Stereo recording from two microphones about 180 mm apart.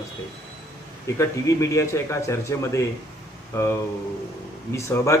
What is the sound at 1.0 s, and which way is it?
Speech, 15° left (ahead or behind).